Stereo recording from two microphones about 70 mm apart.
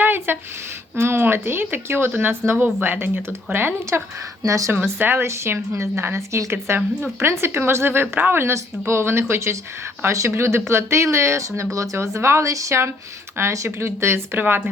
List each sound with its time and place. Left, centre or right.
0.0 s a sound: right
0.9 s a woman's voice: right
4.4 s speech: right
4.7 s a woman's voice: right
14.3 s speech: right